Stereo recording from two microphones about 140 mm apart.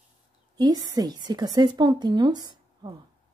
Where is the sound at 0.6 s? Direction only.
30° right (ahead or behind).